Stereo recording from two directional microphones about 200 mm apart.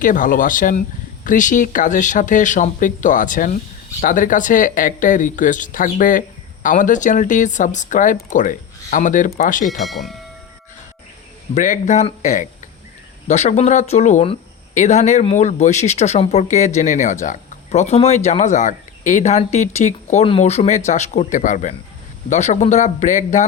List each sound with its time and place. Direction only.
0.0 s speech: 40° left (ahead or behind)
9.8 s speech: centre (ahead or behind)
11.5 s speech: 40° left (ahead or behind)